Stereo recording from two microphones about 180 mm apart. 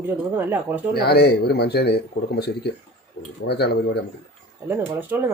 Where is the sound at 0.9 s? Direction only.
60° left (ahead or behind).